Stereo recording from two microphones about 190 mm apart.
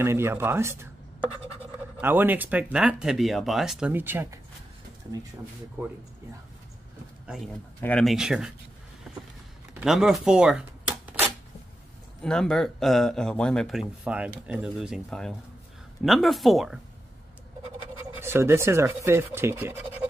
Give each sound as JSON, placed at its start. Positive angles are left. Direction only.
{"t": 0.0, "sound": "speech", "side_deg": -10}
{"t": 2.0, "sound": "speech", "side_deg": -10}
{"t": 7.8, "sound": "speech", "side_deg": 5}
{"t": 9.8, "sound": "a sound", "side_deg": 0}
{"t": 12.2, "sound": "speech", "side_deg": 5}
{"t": 18.2, "sound": "speech", "side_deg": -15}